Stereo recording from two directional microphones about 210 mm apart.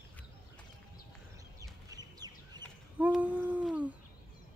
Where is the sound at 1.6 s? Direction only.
20° right (ahead or behind).